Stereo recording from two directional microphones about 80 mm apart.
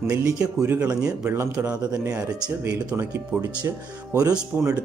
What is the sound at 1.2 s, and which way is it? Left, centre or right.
Speech, right.